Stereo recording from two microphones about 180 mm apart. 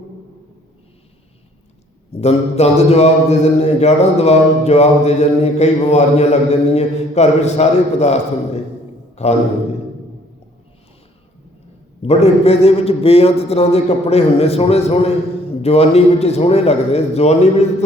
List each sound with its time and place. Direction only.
2.1 s speech: 35° left (ahead or behind)
12.0 s speech: 35° left (ahead or behind)